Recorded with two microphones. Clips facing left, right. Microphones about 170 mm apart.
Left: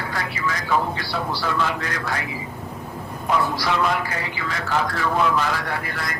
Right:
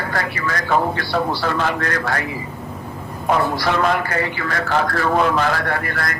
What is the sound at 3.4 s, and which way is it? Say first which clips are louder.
A man's voice: right 2 dB; 55° right (ahead or behind).